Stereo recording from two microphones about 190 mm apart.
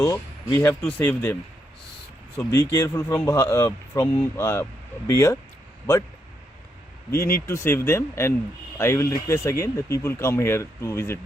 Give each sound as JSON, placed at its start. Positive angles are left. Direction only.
{"t": 0.0, "sound": "speech", "side_deg": 15}
{"t": 7.3, "sound": "speech", "side_deg": 15}